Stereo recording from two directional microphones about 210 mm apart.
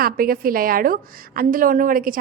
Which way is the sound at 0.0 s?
45° right (ahead or behind).